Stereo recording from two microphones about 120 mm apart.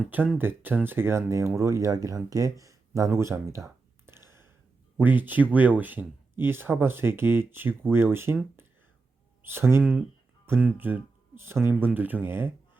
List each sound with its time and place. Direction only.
0.1 s speech: 15° right (ahead or behind)
9.4 s speech: 20° right (ahead or behind)